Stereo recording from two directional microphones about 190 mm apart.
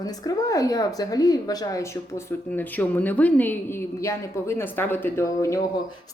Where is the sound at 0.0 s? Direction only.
20° left (ahead or behind).